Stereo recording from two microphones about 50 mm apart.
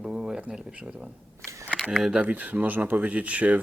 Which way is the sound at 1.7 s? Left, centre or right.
Centre.